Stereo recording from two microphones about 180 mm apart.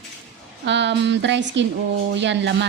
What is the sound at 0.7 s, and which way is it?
Speech, 80° right.